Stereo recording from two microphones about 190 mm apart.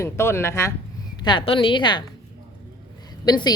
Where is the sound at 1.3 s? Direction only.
25° left (ahead or behind).